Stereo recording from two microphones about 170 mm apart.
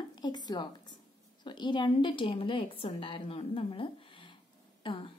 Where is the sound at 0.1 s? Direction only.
25° left (ahead or behind).